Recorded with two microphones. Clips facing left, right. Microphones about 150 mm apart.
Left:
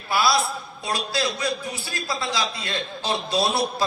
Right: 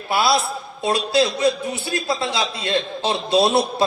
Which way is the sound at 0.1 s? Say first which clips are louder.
Right 3 dB; 25° right (ahead or behind).